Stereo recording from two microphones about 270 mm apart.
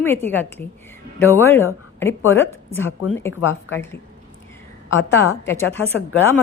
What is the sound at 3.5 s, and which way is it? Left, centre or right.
Speech, left.